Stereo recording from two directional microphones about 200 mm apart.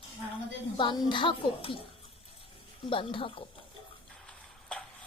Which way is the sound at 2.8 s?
25° left (ahead or behind).